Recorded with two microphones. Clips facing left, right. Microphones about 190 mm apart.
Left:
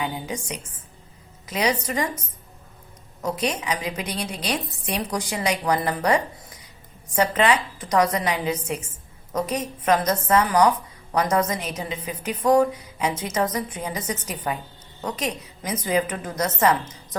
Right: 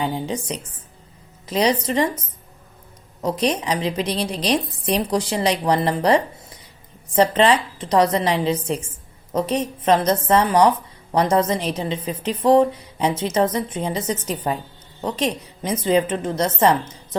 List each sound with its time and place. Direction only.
0.0 s a woman's voice: 30° right (ahead or behind)
1.5 s a woman's voice: 30° right (ahead or behind)
3.2 s a woman's voice: 30° right (ahead or behind)